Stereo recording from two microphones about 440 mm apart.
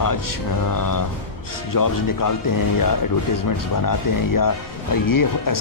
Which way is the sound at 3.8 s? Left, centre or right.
Left.